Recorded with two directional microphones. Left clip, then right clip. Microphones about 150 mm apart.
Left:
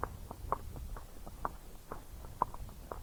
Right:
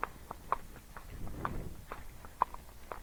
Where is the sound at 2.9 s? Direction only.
35° right (ahead or behind).